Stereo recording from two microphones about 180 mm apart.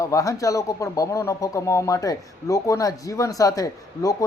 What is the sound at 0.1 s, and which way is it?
Speech, 20° left (ahead or behind).